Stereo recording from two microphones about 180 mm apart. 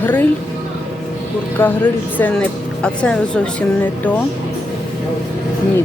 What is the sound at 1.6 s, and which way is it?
Speech, 10° left (ahead or behind).